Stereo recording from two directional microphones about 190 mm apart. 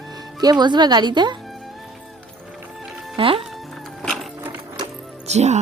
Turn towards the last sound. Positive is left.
turn(degrees=-35)  # may be behind; listen again after turning